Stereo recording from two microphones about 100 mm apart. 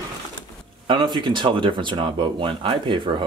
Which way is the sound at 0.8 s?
50° right (ahead or behind).